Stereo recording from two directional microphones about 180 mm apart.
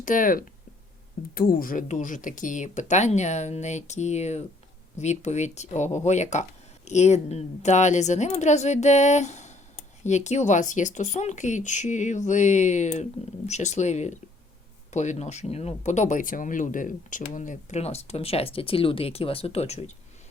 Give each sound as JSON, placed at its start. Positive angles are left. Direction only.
{"t": 0.0, "sound": "speech", "side_deg": 50}